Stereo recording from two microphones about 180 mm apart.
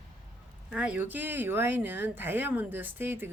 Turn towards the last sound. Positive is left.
turn(degrees=-10)  # may be behind; listen again after turning